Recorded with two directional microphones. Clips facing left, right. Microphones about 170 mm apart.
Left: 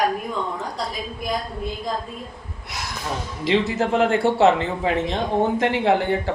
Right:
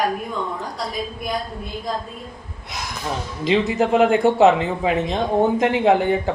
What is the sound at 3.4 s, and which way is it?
A man's voice, 20° right (ahead or behind).